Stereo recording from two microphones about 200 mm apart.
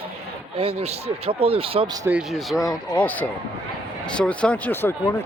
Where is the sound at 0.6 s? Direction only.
30° right (ahead or behind).